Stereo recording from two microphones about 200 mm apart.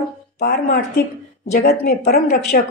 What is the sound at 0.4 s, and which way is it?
Speech, 50° left (ahead or behind).